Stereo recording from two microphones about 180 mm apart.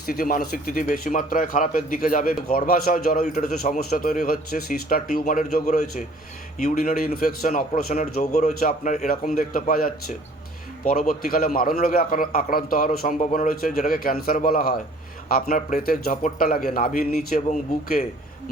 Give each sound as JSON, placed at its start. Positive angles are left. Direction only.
{"t": 0.0, "sound": "a man's voice", "side_deg": 55}
{"t": 7.9, "sound": "a man's voice", "side_deg": 40}
{"t": 15.4, "sound": "a man's voice", "side_deg": 45}